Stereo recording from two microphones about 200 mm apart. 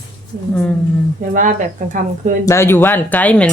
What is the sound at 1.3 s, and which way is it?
Speech, 40° right (ahead or behind).